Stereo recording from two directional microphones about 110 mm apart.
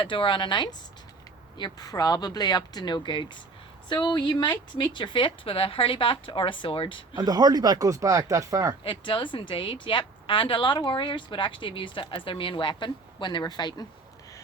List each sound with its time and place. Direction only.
0.0 s speech: 50° left (ahead or behind)
7.2 s speech: 35° right (ahead or behind)
8.8 s speech: 50° left (ahead or behind)